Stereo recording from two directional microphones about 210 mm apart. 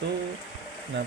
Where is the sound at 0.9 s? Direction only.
55° right (ahead or behind).